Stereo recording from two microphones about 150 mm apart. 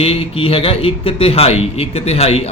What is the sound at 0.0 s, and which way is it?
Speech, 40° left (ahead or behind).